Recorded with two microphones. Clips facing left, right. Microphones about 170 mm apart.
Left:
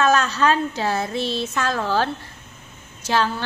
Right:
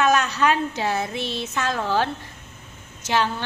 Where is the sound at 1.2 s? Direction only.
40° left (ahead or behind).